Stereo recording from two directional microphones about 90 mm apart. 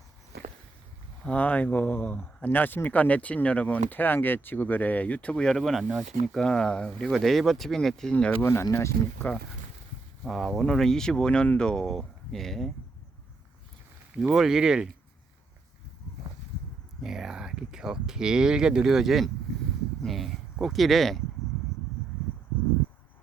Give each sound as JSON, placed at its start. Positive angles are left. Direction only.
{"t": 1.2, "sound": "speech", "side_deg": 15}
{"t": 8.4, "sound": "speech", "side_deg": 30}
{"t": 10.2, "sound": "speech", "side_deg": 5}
{"t": 14.3, "sound": "speech", "side_deg": -5}
{"t": 17.0, "sound": "speech", "side_deg": -5}